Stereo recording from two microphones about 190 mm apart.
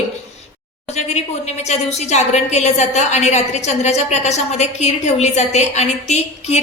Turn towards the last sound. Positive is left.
turn(degrees=35)  # may be behind; listen again after turning